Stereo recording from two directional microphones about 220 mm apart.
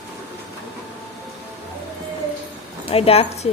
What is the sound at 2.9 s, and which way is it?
Speech, 25° left (ahead or behind).